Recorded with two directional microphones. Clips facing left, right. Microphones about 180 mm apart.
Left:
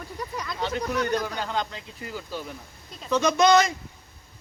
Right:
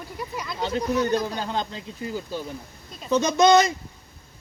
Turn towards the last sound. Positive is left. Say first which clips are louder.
# right 2 dB
turn(degrees=-20)  # may be behind; listen again after turning